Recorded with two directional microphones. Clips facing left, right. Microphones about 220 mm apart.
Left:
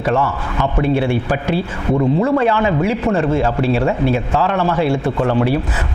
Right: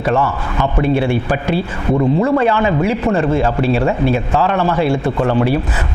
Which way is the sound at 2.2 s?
20° right (ahead or behind).